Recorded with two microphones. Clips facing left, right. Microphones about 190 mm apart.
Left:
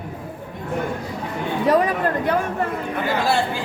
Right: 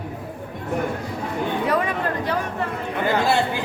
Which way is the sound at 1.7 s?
40° left (ahead or behind).